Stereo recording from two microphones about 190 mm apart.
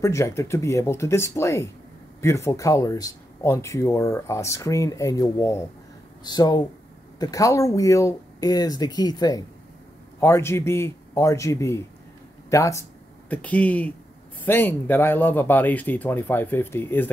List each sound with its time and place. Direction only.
0.0 s speech: 15° left (ahead or behind)